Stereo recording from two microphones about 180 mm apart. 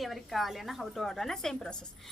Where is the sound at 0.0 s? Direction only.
Centre (ahead or behind).